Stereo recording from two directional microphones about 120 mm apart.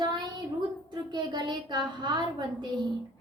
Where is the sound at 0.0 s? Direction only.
35° right (ahead or behind).